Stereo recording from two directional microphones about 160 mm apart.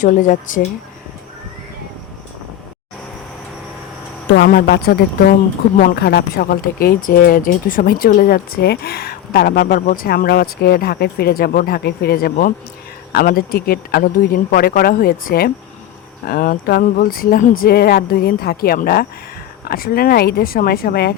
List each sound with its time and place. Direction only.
0.0 s speech: 55° left (ahead or behind)
4.4 s speech: 80° left
9.8 s speech: 60° left (ahead or behind)